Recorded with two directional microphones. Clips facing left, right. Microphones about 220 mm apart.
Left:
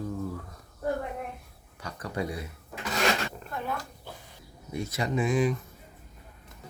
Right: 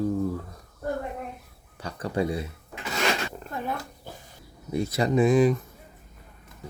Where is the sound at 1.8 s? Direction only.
30° right (ahead or behind).